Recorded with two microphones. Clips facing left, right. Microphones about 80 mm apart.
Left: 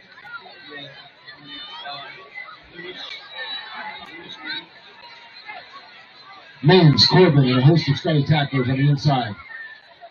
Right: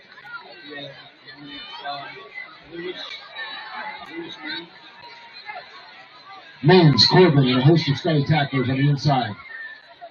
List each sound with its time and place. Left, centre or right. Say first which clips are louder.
1.4 s chatter: right 2 dB; left
2.9 s chatter: right 3 dB; centre
5.5 s chatter: right 2 dB; centre
6.3 s a man's voice: even; centre